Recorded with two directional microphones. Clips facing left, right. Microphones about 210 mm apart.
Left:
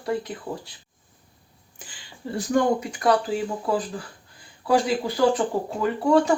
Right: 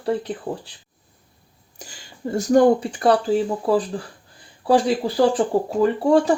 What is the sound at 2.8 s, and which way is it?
Speech, 30° right (ahead or behind).